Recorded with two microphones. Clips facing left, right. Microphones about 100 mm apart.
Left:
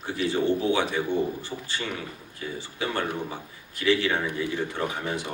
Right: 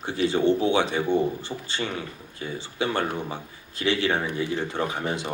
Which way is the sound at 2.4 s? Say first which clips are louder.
Right 2 dB; 35° right (ahead or behind).